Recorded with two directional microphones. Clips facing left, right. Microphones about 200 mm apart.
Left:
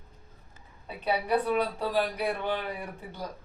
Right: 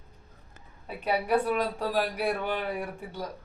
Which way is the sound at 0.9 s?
10° right (ahead or behind).